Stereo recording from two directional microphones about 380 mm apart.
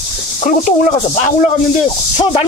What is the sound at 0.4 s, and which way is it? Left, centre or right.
Speech, centre.